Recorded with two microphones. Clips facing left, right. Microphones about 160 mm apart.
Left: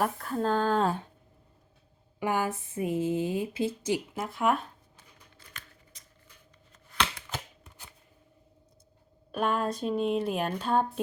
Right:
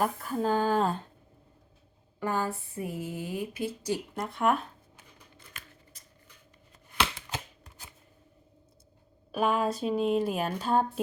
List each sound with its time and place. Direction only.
0.0 s speech: 5° right (ahead or behind)
2.1 s speech: 15° left (ahead or behind)
3.9 s speech: 5° left (ahead or behind)
9.3 s speech: 5° right (ahead or behind)